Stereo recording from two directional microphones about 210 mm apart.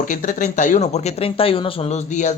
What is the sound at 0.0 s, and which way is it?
Speech, 40° left (ahead or behind).